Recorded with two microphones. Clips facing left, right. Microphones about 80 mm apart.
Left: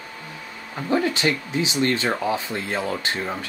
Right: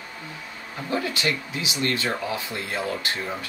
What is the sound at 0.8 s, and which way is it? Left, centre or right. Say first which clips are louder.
Speech: left 5 dB; left.